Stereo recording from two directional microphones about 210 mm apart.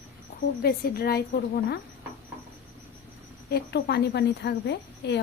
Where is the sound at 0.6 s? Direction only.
45° left (ahead or behind).